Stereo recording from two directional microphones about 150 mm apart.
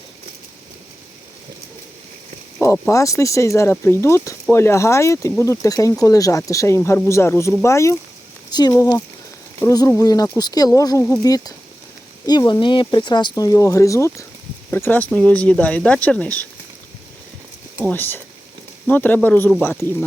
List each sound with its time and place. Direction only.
2.9 s speech: 20° left (ahead or behind)
17.9 s speech: 15° left (ahead or behind)